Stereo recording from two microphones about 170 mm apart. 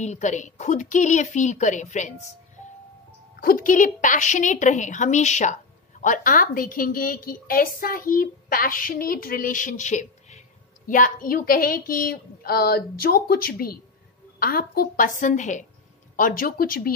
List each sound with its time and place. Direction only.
0.0 s a woman's voice: 45° left (ahead or behind)
3.3 s a woman's voice: 55° left (ahead or behind)